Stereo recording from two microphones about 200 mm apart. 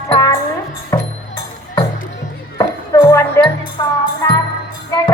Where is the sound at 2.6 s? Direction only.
15° left (ahead or behind).